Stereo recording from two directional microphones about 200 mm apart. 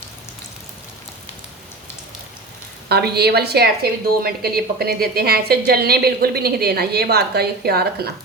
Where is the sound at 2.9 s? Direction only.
55° right (ahead or behind).